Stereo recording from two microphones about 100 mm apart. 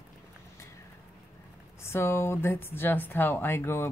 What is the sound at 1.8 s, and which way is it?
Speech, 25° left (ahead or behind).